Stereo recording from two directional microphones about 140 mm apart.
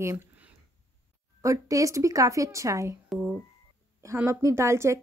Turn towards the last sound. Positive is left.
turn(degrees=-20)  # may be behind; listen again after turning